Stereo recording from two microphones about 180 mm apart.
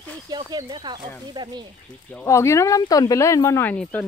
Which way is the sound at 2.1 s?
10° left (ahead or behind).